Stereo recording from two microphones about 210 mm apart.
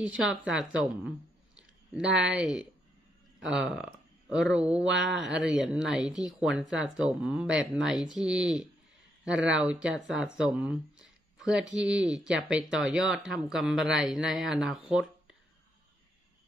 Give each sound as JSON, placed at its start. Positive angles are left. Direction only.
{"t": 0.3, "sound": "speech", "side_deg": -5}
{"t": 2.1, "sound": "speech", "side_deg": -5}
{"t": 9.3, "sound": "speech", "side_deg": -55}
{"t": 9.6, "sound": "speech", "side_deg": -5}